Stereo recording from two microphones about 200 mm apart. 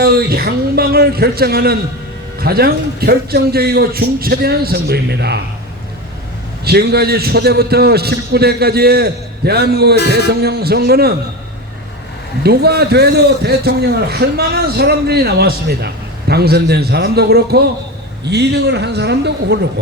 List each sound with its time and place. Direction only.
0.0 s a man's voice: 50° right (ahead or behind)
6.7 s a man's voice: 50° right (ahead or behind)
12.4 s a man's voice: 50° right (ahead or behind)